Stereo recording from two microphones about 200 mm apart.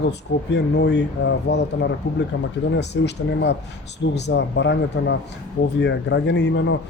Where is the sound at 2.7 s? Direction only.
60° left (ahead or behind).